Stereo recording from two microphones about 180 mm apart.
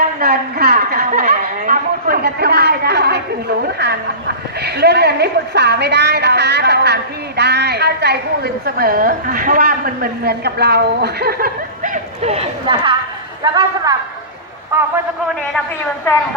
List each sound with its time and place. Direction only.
0.0 s a woman's voice: 60° right (ahead or behind)
1.3 s a sound: 45° right (ahead or behind)
2.2 s speech: 60° right (ahead or behind)
4.6 s a woman's voice: 65° right (ahead or behind); by 13.9 s 25° right (ahead or behind)
14.7 s a man's voice: 10° right (ahead or behind)